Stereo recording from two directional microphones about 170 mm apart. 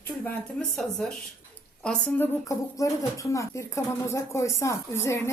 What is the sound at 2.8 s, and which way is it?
Speech, 20° left (ahead or behind).